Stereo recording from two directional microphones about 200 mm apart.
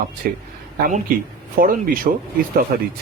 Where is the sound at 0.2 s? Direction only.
45° right (ahead or behind).